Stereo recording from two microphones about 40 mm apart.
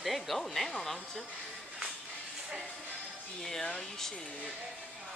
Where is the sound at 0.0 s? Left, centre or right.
Centre.